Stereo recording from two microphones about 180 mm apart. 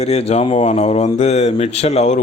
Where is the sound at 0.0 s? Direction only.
35° left (ahead or behind).